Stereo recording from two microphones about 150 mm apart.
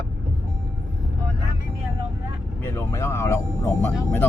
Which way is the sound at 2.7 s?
20° left (ahead or behind).